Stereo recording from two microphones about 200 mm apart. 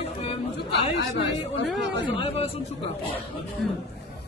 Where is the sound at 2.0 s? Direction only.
30° left (ahead or behind).